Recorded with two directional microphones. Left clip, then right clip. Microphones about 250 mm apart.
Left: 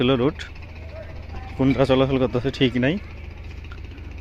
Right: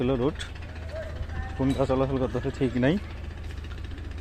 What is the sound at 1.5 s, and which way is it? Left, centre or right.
Speech, centre.